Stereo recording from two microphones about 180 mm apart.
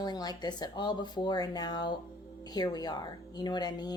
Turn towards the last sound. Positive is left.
turn(degrees=25)  # may be behind; listen again after turning